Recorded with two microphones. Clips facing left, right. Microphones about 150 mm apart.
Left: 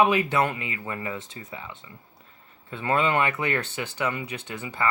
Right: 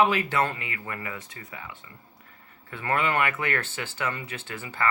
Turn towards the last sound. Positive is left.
turn(degrees=20)  # may be behind; listen again after turning